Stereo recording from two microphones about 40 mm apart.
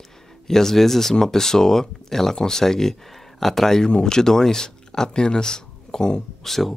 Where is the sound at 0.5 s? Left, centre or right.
Centre.